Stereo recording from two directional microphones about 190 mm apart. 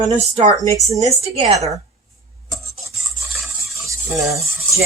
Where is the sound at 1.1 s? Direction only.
30° right (ahead or behind).